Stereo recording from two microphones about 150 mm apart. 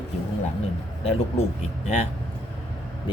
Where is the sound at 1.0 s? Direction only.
45° left (ahead or behind).